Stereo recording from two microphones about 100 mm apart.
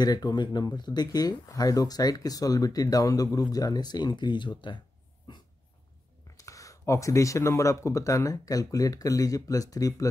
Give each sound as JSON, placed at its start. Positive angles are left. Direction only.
{"t": 0.0, "sound": "speech", "side_deg": 40}
{"t": 6.3, "sound": "speech", "side_deg": 35}